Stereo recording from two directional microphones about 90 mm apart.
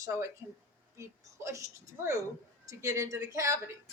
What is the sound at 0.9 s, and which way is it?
Speech, 35° right (ahead or behind).